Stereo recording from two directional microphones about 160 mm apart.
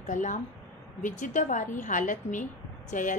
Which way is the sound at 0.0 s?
50° left (ahead or behind).